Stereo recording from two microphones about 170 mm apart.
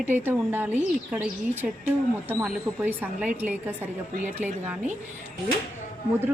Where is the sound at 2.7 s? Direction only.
10° right (ahead or behind).